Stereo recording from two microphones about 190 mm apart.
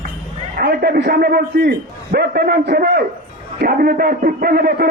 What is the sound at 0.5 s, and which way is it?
A man's voice, 55° right (ahead or behind).